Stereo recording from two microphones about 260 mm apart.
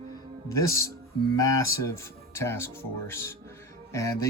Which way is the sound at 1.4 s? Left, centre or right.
Centre.